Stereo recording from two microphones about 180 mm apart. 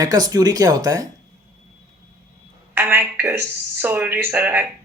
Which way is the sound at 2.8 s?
10° right (ahead or behind).